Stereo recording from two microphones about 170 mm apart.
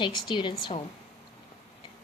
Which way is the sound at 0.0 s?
30° left (ahead or behind).